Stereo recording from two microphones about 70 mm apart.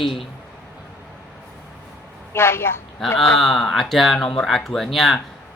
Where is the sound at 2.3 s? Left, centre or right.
Left.